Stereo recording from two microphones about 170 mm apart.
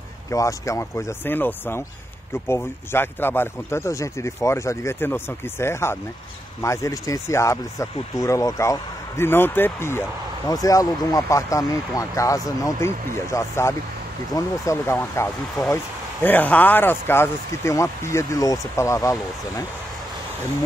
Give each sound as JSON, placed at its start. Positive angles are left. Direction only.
{"t": 0.3, "sound": "speech", "side_deg": 20}